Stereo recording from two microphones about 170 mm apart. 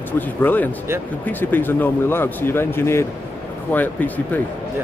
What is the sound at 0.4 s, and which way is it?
Speech, 10° left (ahead or behind).